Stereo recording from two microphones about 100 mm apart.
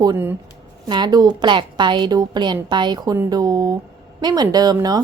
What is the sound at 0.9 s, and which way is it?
A woman's voice, 50° right (ahead or behind).